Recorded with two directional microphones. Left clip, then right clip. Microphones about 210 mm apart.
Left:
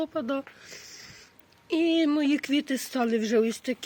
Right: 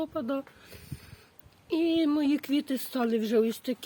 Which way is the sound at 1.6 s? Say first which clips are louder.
Left 2 dB; 5° right (ahead or behind).